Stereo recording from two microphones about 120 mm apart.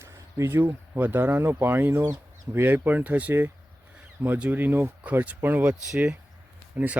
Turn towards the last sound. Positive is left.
turn(degrees=-15)  # may be behind; listen again after turning